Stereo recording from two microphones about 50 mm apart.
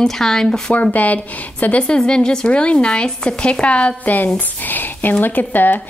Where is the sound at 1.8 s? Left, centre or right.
Centre.